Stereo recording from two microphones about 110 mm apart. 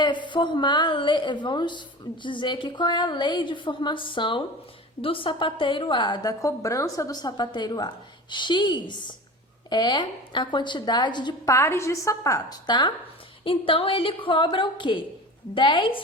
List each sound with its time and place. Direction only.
0.0 s a woman's voice: 45° left (ahead or behind)
6.4 s a woman's voice: 30° left (ahead or behind)
11.4 s a woman's voice: 25° left (ahead or behind); by 12.9 s 40° left (ahead or behind)
13.4 s a woman's voice: 55° left (ahead or behind)